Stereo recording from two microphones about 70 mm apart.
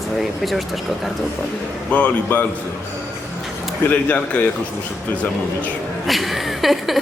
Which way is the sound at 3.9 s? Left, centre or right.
Left.